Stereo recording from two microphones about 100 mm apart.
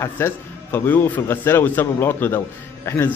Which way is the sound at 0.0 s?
20° left (ahead or behind).